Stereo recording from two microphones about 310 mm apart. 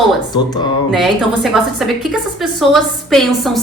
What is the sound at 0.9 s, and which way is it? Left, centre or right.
A woman's voice, centre.